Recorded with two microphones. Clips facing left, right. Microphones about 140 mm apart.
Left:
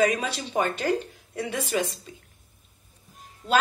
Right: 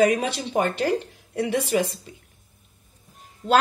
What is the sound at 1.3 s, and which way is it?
Speech, 65° right (ahead or behind).